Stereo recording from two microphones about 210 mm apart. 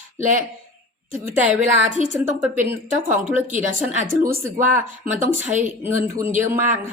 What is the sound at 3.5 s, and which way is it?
Speech, 40° right (ahead or behind).